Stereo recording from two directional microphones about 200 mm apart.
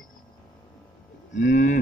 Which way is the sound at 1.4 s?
35° left (ahead or behind).